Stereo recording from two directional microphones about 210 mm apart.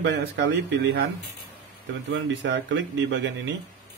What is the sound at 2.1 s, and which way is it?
Speech, 60° right (ahead or behind).